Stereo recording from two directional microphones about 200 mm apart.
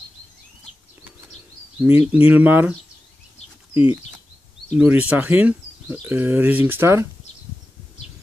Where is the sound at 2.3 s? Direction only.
10° right (ahead or behind).